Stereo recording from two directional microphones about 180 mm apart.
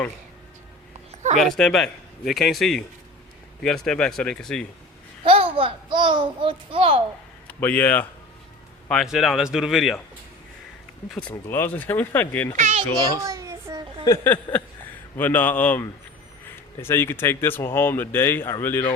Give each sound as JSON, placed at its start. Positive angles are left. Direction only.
{"t": 1.4, "sound": "a man's voice", "side_deg": 0}
{"t": 5.2, "sound": "a child's voice", "side_deg": -30}
{"t": 7.4, "sound": "a man's voice", "side_deg": 10}
{"t": 11.1, "sound": "speech", "side_deg": 5}
{"t": 12.5, "sound": "a child's voice", "side_deg": -40}
{"t": 13.1, "sound": "child singing", "side_deg": -20}
{"t": 14.0, "sound": "speech", "side_deg": 15}